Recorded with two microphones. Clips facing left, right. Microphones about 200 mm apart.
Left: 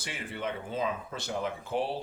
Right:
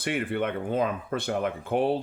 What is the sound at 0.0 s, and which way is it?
Speech, 60° right (ahead or behind).